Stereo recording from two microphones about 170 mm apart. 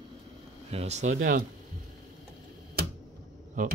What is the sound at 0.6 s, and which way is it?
Speech, 40° right (ahead or behind).